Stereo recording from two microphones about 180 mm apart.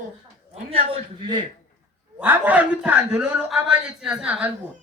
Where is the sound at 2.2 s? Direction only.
10° right (ahead or behind).